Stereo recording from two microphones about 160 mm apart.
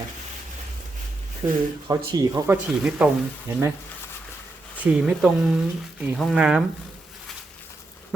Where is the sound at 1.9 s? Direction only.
25° right (ahead or behind).